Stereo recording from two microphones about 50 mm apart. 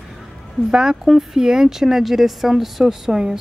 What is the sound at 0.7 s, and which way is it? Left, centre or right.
A woman's voice, centre.